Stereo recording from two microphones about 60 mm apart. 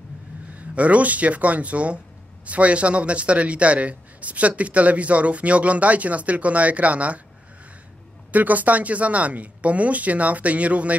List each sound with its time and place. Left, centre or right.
0.6 s a man's voice: right
8.3 s a man's voice: right